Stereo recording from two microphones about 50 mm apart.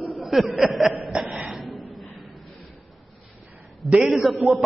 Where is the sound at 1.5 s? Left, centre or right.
Centre.